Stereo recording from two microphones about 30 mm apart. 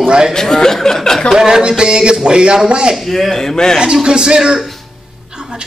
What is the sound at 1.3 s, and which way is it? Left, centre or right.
A man's voice, right.